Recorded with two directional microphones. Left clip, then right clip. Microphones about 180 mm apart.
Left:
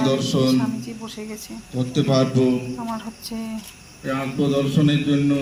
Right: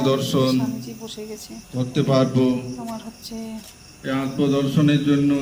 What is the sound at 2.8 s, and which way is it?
Speech, centre (ahead or behind).